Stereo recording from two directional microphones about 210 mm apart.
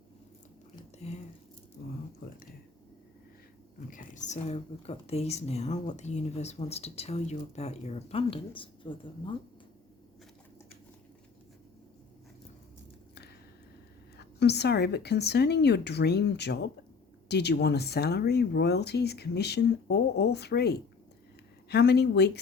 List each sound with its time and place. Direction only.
1.0 s speech: 30° left (ahead or behind)
3.8 s speech: 40° left (ahead or behind)
14.2 s speech: 50° left (ahead or behind)